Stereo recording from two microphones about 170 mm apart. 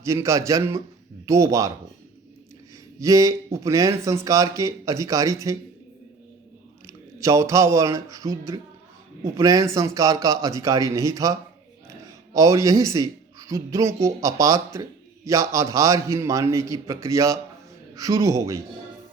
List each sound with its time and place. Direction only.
0.0 s a man's voice: 15° right (ahead or behind)
3.0 s speech: 20° right (ahead or behind)
6.8 s speech: 20° right (ahead or behind)